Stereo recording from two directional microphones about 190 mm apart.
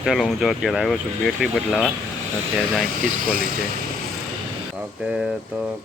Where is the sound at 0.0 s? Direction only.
Centre (ahead or behind).